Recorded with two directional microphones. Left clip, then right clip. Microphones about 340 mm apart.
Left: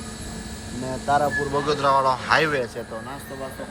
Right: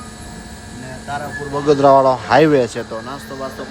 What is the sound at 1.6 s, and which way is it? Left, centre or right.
Speech, centre.